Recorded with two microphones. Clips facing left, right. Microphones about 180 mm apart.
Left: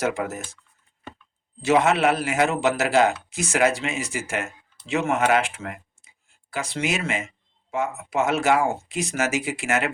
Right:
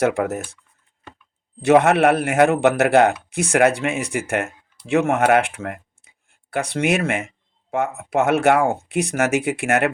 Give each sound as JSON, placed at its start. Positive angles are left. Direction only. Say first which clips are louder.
{"t": 0.0, "sound": "a man's voice", "louder": "right 6 dB", "side_deg": -60}
{"t": 1.6, "sound": "a man's voice", "louder": "right 5 dB", "side_deg": -55}